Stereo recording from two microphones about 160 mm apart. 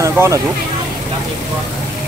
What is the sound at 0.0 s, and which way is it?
Speech, 20° right (ahead or behind).